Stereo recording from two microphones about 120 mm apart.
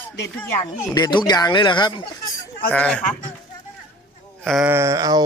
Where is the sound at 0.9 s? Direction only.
35° left (ahead or behind).